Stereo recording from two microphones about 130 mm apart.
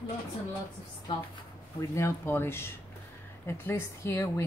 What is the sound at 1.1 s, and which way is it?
Speech, 40° left (ahead or behind).